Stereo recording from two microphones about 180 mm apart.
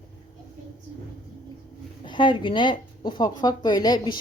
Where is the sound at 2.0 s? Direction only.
25° left (ahead or behind).